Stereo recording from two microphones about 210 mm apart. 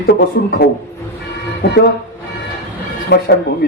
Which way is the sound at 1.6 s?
55° left (ahead or behind).